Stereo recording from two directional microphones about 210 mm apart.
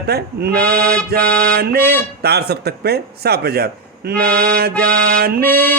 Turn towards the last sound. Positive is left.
turn(degrees=-45)  # may be behind; listen again after turning